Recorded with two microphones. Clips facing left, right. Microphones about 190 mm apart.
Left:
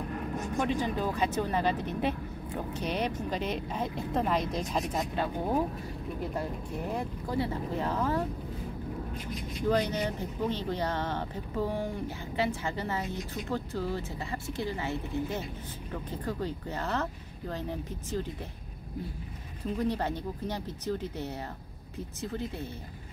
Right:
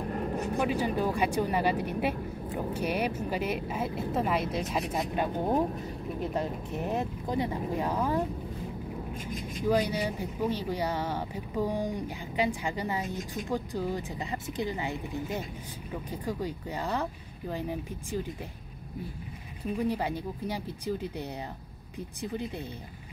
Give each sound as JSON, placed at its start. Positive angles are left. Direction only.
{"t": 0.6, "sound": "speech", "side_deg": -10}
{"t": 9.7, "sound": "speech", "side_deg": -10}
{"t": 19.6, "sound": "speech", "side_deg": -10}